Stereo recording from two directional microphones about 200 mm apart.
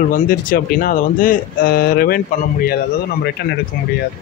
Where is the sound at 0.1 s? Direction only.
45° left (ahead or behind).